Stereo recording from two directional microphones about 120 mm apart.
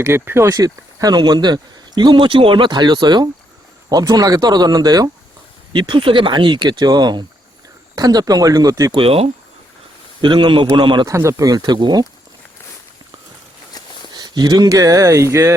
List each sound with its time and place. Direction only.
0.0 s speech: 20° right (ahead or behind)
5.7 s speech: 45° right (ahead or behind)
8.9 s speech: 50° right (ahead or behind)
10.2 s speech: 40° right (ahead or behind)
11.0 s speech: 25° right (ahead or behind)
14.1 s speech: 35° right (ahead or behind)